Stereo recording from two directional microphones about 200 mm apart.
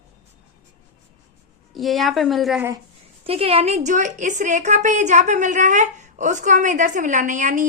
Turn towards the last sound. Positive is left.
turn(degrees=-40)  # may be behind; listen again after turning